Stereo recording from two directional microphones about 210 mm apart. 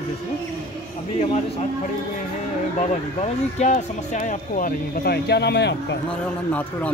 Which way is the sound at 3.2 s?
35° left (ahead or behind).